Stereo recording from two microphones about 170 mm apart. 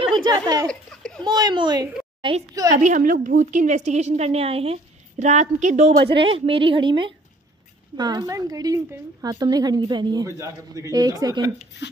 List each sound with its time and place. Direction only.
0.2 s a sound: 25° right (ahead or behind)
0.7 s laughter: 5° left (ahead or behind)
1.2 s a sound: 25° right (ahead or behind)
2.2 s a woman's voice: 30° right (ahead or behind)
2.7 s a woman's voice: 50° right (ahead or behind)
6.1 s a woman's voice: 30° right (ahead or behind)